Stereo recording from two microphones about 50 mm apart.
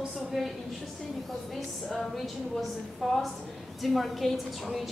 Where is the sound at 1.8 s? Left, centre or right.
Centre.